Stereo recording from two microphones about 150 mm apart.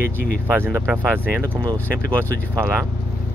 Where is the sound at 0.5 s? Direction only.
15° right (ahead or behind).